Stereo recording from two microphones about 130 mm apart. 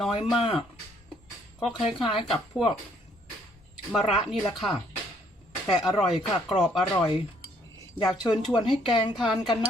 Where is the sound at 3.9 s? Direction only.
Centre (ahead or behind).